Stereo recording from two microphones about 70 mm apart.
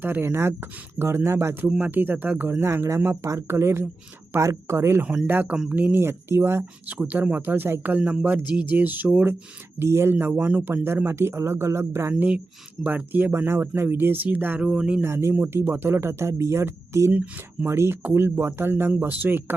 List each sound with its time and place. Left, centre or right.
0.0 s speech: right
1.8 s speech: right
2.5 s speech: right
5.0 s speech: right
6.0 s speech: right
6.6 s speech: right
9.7 s speech: right
10.2 s speech: right
12.8 s speech: right
14.6 s speech: centre
15.0 s speech: right
17.1 s speech: right
17.7 s speech: right